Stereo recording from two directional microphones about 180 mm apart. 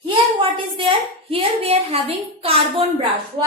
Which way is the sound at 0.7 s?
30° right (ahead or behind).